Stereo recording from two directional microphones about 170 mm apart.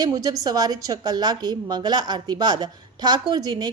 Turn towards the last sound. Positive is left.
turn(degrees=-25)  # may be behind; listen again after turning